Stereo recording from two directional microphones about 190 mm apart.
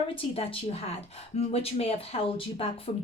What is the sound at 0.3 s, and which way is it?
A woman's voice, 30° left (ahead or behind).